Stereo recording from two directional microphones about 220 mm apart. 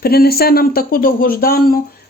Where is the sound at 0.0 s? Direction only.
45° left (ahead or behind).